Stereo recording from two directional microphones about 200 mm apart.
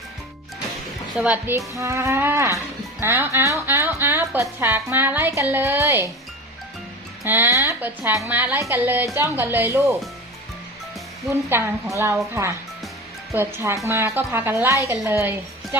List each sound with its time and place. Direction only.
1.1 s a woman's voice: 5° right (ahead or behind)
7.3 s speech: 10° right (ahead or behind)
11.4 s speech: 10° right (ahead or behind)